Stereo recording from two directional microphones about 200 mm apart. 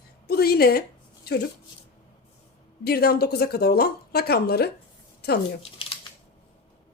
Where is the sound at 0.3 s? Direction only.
50° left (ahead or behind).